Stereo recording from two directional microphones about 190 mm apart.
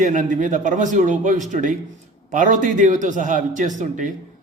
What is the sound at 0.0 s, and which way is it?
A man's voice, 40° right (ahead or behind).